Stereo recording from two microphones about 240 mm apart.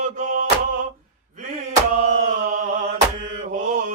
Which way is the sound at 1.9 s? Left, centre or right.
Right.